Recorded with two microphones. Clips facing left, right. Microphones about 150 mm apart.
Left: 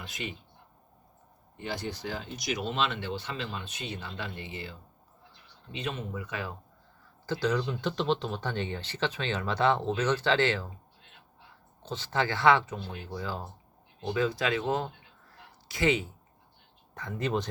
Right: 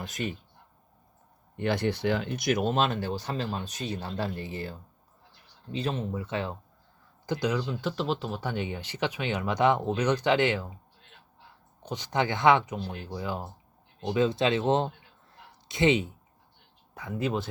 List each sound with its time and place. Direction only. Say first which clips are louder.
0.0 s speech: right 5 dB; 45° right (ahead or behind)
1.5 s speech: right 8 dB; 60° right (ahead or behind); by 6.6 s 25° right (ahead or behind)
7.3 s speech: even; 15° right (ahead or behind)
7.6 s speech: even; 5° right (ahead or behind)
11.8 s speech: right 2 dB; 15° right (ahead or behind)
16.9 s speech: right 1 dB; 10° right (ahead or behind)